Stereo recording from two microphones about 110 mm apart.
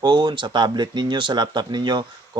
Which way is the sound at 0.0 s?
45° right (ahead or behind).